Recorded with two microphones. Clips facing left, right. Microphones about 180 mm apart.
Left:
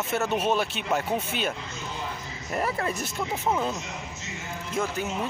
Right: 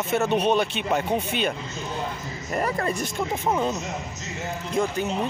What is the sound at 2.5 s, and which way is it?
Speech, 5° left (ahead or behind).